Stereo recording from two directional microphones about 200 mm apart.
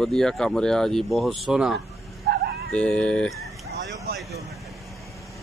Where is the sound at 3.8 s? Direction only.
60° right (ahead or behind).